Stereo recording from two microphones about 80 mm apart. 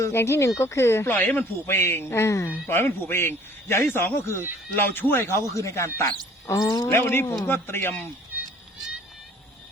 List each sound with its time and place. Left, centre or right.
0.0 s speech: left
2.5 s a man's voice: left
6.6 s speech: left
6.8 s a man's voice: left
8.3 s a sound: right